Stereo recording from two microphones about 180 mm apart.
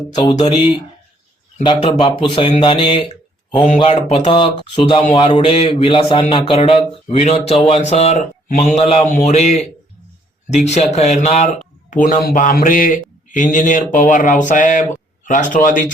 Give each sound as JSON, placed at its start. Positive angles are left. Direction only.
{"t": 0.2, "sound": "speech", "side_deg": 25}
{"t": 1.6, "sound": "speech", "side_deg": 30}
{"t": 12.0, "sound": "speech", "side_deg": 50}